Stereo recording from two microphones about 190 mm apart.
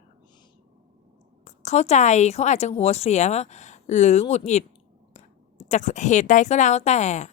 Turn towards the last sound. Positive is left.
turn(degrees=35)  # may be behind; listen again after turning